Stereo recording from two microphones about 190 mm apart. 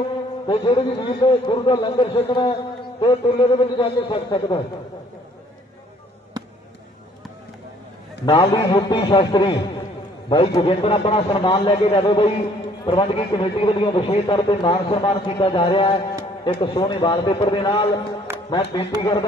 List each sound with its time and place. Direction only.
0.5 s a man's voice: 25° left (ahead or behind)
8.3 s a man's voice: 25° left (ahead or behind)